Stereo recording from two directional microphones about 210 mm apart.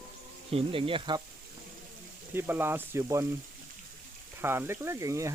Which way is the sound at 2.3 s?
10° right (ahead or behind).